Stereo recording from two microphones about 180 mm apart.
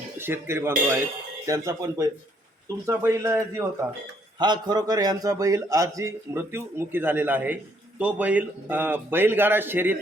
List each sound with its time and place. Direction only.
0.2 s a man's voice: 15° right (ahead or behind)
4.4 s a man's voice: 25° right (ahead or behind)